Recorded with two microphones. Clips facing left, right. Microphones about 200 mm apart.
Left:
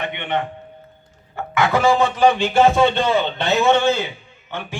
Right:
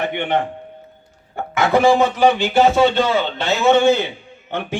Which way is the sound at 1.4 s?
25° right (ahead or behind).